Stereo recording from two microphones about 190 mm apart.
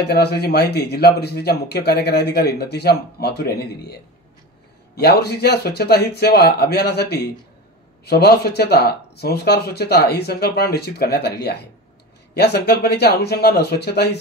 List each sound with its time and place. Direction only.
0.0 s a man's voice: 60° left (ahead or behind)